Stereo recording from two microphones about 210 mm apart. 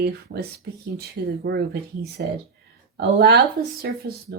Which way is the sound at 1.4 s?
45° right (ahead or behind).